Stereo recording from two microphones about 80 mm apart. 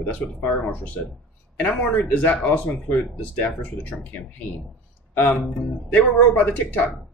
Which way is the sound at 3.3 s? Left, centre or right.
Centre.